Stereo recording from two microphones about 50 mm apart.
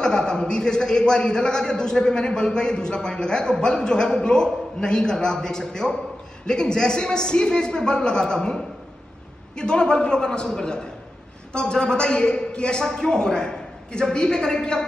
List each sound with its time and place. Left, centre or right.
0.0 s a man's voice: centre